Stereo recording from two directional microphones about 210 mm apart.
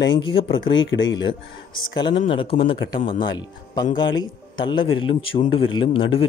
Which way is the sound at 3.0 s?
40° left (ahead or behind).